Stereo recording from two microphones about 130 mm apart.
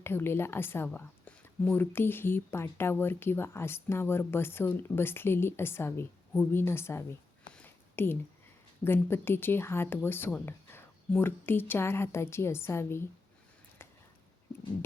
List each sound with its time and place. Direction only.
0.0 s speech: 15° left (ahead or behind)
7.5 s a sound: 15° left (ahead or behind)
8.8 s a woman's voice: 20° left (ahead or behind)